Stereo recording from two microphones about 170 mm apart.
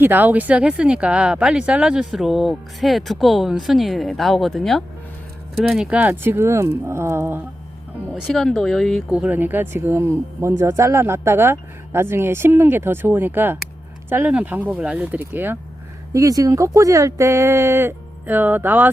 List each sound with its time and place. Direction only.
0.0 s speech: 10° right (ahead or behind)
8.1 s speech: centre (ahead or behind)